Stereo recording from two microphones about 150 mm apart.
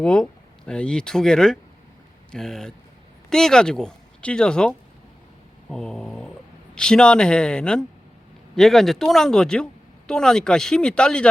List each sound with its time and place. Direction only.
0.0 s speech: 5° left (ahead or behind)
5.6 s a sound: 5° left (ahead or behind)
6.7 s speech: 5° left (ahead or behind)